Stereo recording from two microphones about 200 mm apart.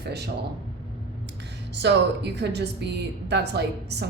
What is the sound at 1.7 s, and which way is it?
A woman's voice, 60° right (ahead or behind).